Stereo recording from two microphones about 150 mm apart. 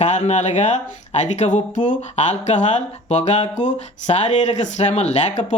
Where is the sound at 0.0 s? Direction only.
50° left (ahead or behind).